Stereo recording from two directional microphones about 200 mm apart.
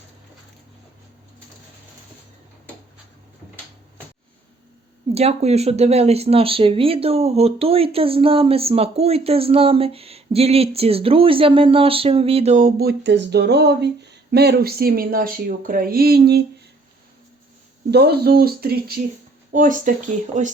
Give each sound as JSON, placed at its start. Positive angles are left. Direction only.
{"t": 5.1, "sound": "speech", "side_deg": -30}
{"t": 17.9, "sound": "speech", "side_deg": -55}